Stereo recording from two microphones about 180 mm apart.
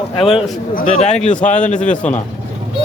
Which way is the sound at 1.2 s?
45° left (ahead or behind).